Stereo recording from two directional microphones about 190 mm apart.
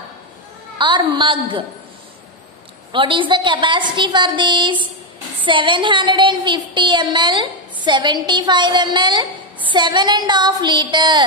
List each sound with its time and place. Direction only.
0.7 s a woman's voice: 25° right (ahead or behind)
2.9 s a woman's voice: 25° right (ahead or behind)